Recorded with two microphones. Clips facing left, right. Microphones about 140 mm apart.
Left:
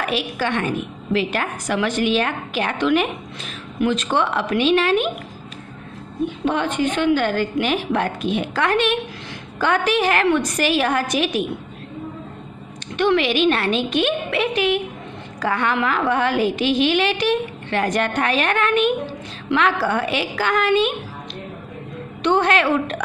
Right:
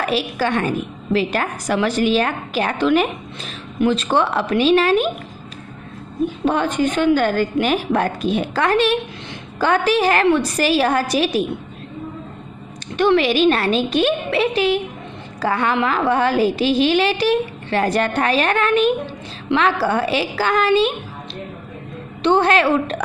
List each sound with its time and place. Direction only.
0.0 s a woman's voice: 40° right (ahead or behind)
6.2 s a woman's voice: 40° right (ahead or behind)
12.9 s a woman's voice: 40° right (ahead or behind)
22.2 s a woman's voice: 30° right (ahead or behind)